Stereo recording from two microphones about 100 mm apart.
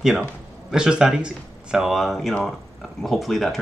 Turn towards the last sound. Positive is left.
turn(degrees=0)  # may be behind; listen again after turning